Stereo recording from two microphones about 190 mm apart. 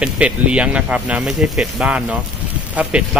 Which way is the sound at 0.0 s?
5° right (ahead or behind).